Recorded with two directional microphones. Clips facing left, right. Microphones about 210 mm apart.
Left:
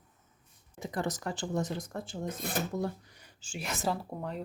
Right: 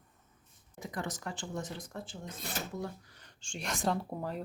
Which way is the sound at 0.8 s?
30° left (ahead or behind).